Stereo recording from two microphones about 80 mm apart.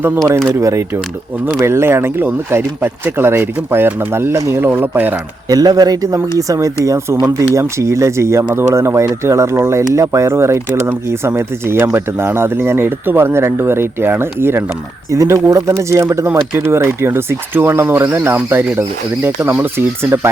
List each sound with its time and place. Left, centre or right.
0.6 s speech: right
5.5 s speech: right
15.1 s speech: right